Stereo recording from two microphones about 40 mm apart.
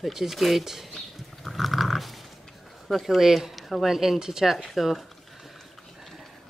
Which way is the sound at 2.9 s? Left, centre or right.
Centre.